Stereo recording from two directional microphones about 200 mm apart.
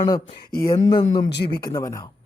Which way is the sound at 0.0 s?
20° left (ahead or behind).